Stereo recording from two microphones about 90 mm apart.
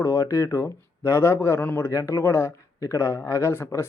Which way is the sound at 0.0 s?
30° left (ahead or behind).